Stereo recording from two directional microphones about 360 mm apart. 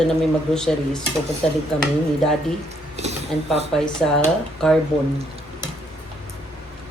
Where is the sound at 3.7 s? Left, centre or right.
Centre.